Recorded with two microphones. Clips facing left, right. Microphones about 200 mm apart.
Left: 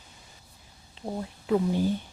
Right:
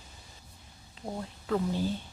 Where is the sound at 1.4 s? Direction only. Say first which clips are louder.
Left 5 dB; 15° left (ahead or behind).